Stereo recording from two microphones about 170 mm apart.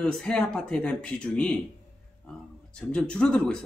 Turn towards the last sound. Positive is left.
turn(degrees=5)  # may be behind; listen again after turning